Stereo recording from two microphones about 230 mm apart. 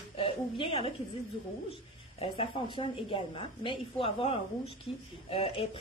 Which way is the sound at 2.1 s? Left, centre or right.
Left.